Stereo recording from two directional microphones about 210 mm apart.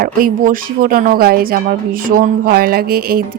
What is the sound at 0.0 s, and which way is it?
Speech, 45° right (ahead or behind).